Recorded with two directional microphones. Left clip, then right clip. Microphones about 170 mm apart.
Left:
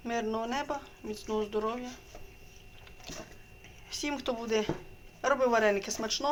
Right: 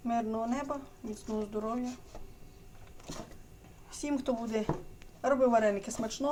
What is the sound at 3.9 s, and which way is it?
Speech, 10° right (ahead or behind).